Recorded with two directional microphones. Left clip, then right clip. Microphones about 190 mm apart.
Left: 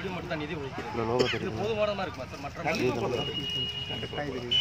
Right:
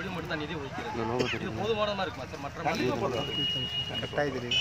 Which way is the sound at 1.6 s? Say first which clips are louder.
Even; 30° left (ahead or behind).